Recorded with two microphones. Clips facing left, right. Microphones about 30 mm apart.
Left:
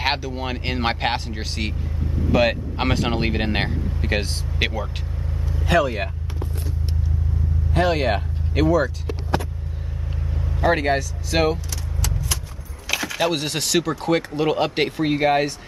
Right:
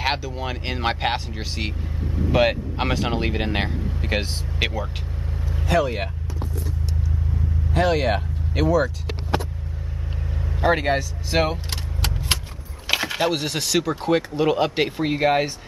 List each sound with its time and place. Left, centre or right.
0.0 s speech: centre
2.3 s speech: centre
2.8 s speech: centre
7.7 s speech: centre
10.7 s speech: centre
11.7 s vehicle: right
12.8 s a sound: right
13.3 s speech: centre